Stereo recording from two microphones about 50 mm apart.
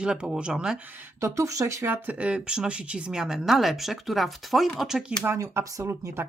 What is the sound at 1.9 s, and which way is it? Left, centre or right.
Speech, right.